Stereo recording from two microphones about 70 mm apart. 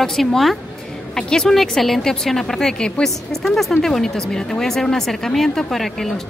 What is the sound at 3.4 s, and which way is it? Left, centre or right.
Female singing, centre.